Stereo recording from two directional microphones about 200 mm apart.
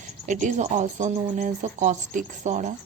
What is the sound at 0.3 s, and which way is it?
Speech, 40° right (ahead or behind).